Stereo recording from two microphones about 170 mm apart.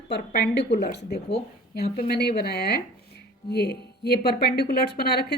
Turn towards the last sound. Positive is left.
turn(degrees=70)  # may be behind; listen again after turning